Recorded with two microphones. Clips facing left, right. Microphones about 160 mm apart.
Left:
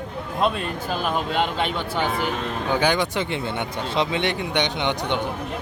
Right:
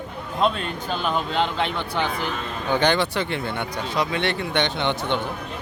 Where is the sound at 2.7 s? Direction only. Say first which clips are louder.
Right 1 dB; 10° left (ahead or behind).